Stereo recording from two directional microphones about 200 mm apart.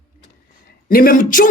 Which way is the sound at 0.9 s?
45° left (ahead or behind).